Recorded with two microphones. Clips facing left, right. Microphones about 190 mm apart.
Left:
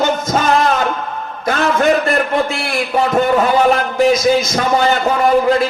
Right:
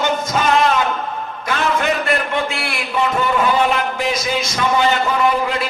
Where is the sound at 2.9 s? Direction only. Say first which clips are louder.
Left 5 dB; 40° left (ahead or behind).